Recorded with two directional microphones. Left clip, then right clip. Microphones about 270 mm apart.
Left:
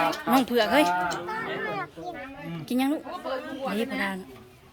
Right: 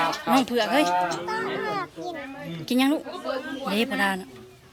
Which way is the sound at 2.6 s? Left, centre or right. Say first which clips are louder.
Right 4 dB; centre.